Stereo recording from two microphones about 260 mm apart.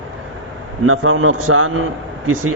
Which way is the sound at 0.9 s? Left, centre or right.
Right.